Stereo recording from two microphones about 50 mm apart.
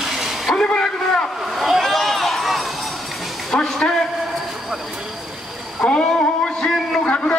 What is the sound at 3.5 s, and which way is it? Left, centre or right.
Speech, centre.